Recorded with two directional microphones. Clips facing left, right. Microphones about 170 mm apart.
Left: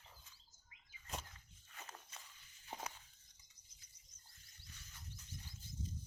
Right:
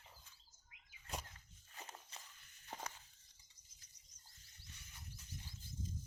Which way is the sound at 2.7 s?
10° left (ahead or behind).